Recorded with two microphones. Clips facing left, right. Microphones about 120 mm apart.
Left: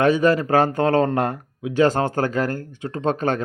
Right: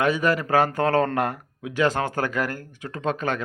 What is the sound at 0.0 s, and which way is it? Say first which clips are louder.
A man's voice: left 5 dB; 25° left (ahead or behind).